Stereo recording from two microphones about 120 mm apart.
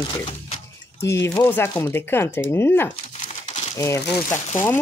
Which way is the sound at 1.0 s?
25° left (ahead or behind).